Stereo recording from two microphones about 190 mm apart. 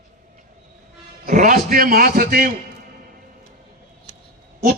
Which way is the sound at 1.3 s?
45° right (ahead or behind).